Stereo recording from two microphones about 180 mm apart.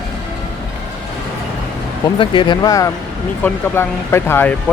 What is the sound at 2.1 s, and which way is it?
Speech, 25° left (ahead or behind).